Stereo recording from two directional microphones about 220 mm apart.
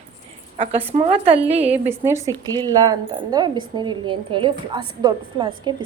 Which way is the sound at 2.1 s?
15° right (ahead or behind).